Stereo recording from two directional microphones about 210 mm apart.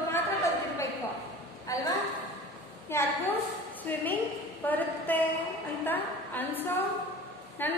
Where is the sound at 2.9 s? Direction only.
10° left (ahead or behind).